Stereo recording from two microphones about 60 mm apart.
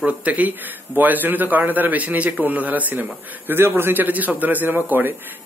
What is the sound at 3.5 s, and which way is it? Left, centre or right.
A man's voice, right.